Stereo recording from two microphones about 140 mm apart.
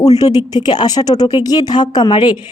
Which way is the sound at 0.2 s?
30° left (ahead or behind).